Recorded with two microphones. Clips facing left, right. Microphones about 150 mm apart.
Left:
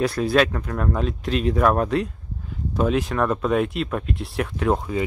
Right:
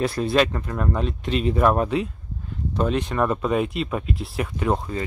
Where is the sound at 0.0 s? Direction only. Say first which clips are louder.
Left 1 dB; centre (ahead or behind).